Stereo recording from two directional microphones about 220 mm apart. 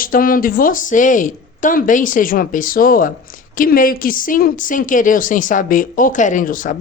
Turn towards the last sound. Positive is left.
turn(degrees=35)  # may be behind; listen again after turning